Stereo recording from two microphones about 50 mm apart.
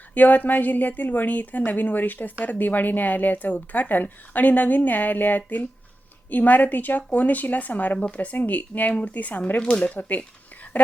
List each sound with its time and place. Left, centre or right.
0.1 s speech: left